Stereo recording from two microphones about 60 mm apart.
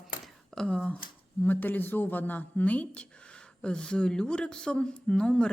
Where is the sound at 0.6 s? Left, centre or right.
Centre.